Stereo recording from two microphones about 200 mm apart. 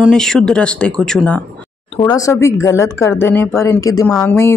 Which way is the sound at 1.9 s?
20° left (ahead or behind).